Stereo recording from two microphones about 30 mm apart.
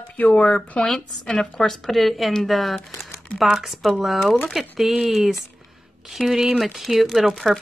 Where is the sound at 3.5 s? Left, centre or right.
Centre.